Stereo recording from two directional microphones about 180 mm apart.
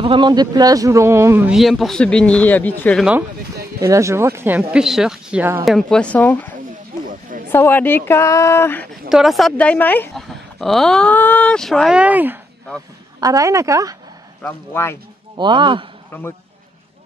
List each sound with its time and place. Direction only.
0.0 s speech: 25° right (ahead or behind); by 3.1 s 5° left (ahead or behind)
3.8 s speech: 15° right (ahead or behind)
5.7 s speech: centre (ahead or behind)
7.1 s a sound: 50° right (ahead or behind)
7.5 s speech: 10° left (ahead or behind)
9.1 s a woman's voice: centre (ahead or behind); by 13.9 s 15° right (ahead or behind)
14.4 s speech: 15° left (ahead or behind)
15.3 s a woman's voice: 25° right (ahead or behind)
16.1 s a man's voice: 10° left (ahead or behind)